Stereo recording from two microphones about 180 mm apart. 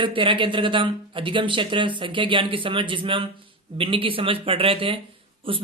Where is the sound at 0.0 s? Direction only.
30° right (ahead or behind).